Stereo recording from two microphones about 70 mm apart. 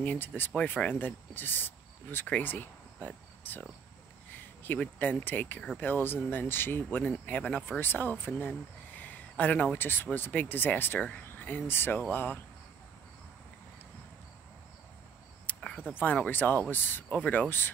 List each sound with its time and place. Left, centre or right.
0.0 s speech: left
4.9 s speech: left
15.5 s a sound: left
16.0 s speech: left